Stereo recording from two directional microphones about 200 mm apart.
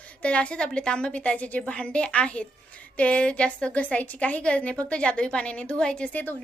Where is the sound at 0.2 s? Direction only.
5° left (ahead or behind).